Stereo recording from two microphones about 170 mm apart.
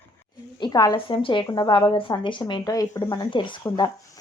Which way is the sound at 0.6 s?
25° left (ahead or behind).